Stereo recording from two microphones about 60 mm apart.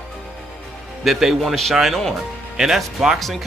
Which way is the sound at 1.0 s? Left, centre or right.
Centre.